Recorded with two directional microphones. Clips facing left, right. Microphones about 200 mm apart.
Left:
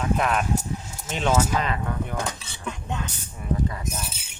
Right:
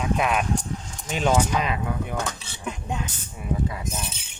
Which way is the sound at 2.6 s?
15° right (ahead or behind).